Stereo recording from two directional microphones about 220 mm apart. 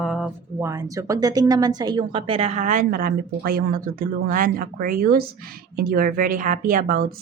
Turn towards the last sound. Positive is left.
turn(degrees=-40)  # may be behind; listen again after turning